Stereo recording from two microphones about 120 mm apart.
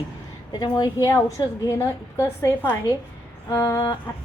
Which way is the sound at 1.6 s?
25° left (ahead or behind).